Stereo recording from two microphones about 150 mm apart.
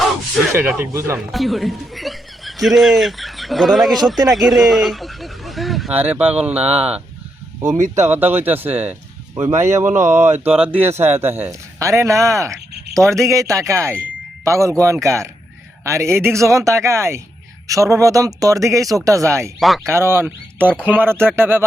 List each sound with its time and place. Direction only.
0.5 s speech: 15° right (ahead or behind)
1.3 s speech: centre (ahead or behind)
5.9 s a man's voice: 10° right (ahead or behind)
19.5 s speech: centre (ahead or behind)
19.9 s speech: 15° right (ahead or behind)